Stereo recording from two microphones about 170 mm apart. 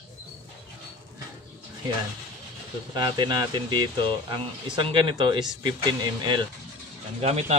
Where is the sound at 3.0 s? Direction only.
25° right (ahead or behind).